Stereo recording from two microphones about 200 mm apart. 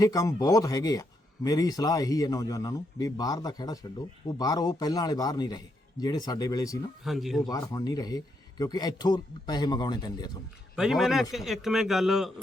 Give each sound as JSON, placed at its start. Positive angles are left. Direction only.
{"t": 0.0, "sound": "a man's voice", "side_deg": 15}
{"t": 7.0, "sound": "a man's voice", "side_deg": 0}
{"t": 7.4, "sound": "speech", "side_deg": 20}
{"t": 10.8, "sound": "a man's voice", "side_deg": 0}